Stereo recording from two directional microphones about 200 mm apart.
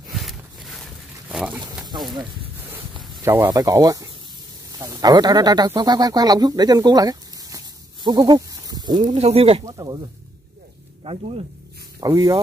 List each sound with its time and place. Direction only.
0.1 s a sound: centre (ahead or behind)
3.2 s speech: 15° right (ahead or behind)
11.1 s speech: 30° right (ahead or behind)
12.0 s speech: 20° right (ahead or behind)